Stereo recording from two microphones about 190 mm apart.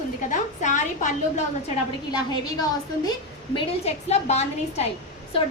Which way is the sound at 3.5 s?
35° left (ahead or behind).